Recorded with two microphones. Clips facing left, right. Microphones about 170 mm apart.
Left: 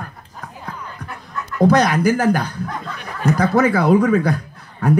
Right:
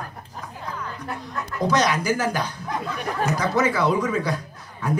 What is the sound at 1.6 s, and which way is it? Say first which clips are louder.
Speech: left 7 dB; 55° left (ahead or behind).